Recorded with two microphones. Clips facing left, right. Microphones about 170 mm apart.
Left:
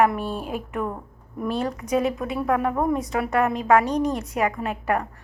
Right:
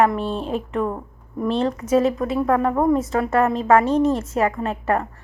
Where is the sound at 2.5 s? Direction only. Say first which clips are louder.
Right 3 dB; 10° left (ahead or behind).